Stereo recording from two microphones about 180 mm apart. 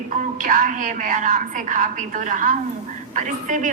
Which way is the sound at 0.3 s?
45° right (ahead or behind).